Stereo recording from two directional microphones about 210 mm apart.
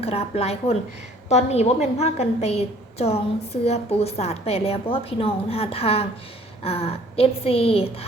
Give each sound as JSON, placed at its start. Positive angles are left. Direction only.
{"t": 0.0, "sound": "a woman's voice", "side_deg": 30}